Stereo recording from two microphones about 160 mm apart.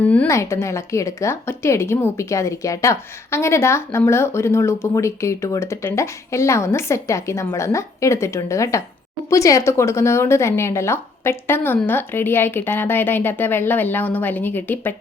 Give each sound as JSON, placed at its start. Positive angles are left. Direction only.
{"t": 0.0, "sound": "speech", "side_deg": 10}